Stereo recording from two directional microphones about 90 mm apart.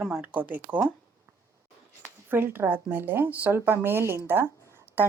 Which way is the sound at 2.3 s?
25° right (ahead or behind).